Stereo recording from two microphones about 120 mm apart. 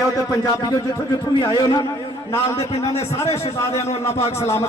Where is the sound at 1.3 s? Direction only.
45° left (ahead or behind).